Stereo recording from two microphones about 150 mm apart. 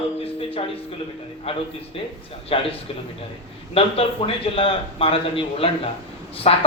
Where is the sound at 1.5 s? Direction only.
40° left (ahead or behind).